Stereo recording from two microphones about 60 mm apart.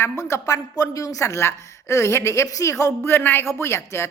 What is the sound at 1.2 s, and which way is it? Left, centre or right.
A woman's voice, left.